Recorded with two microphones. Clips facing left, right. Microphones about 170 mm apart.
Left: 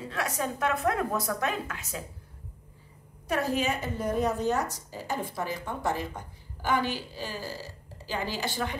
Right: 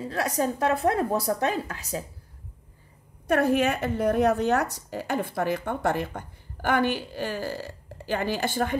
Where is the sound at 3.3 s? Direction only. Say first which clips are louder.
Right 6 dB; 60° right (ahead or behind).